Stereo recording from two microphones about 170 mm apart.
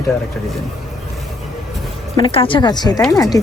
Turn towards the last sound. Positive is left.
turn(degrees=20)  # may be behind; listen again after turning